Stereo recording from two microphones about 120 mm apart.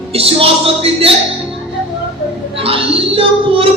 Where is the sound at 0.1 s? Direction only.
55° right (ahead or behind).